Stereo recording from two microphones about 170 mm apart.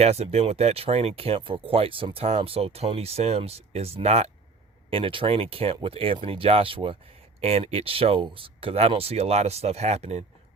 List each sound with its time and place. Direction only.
0.0 s speech: 40° right (ahead or behind)